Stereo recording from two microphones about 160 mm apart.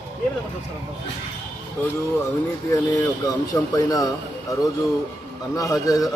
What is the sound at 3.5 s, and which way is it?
Speech, 15° left (ahead or behind).